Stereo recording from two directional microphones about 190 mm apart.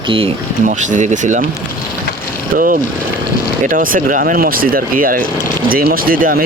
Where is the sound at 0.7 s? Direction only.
40° right (ahead or behind).